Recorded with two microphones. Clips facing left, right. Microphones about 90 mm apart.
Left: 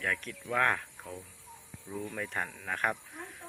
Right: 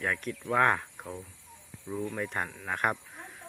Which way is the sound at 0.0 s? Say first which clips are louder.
Right 3 dB; 15° right (ahead or behind).